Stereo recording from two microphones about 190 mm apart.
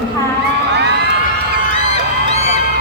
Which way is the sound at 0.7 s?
60° right (ahead or behind).